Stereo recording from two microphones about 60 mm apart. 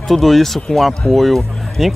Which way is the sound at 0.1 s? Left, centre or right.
Centre.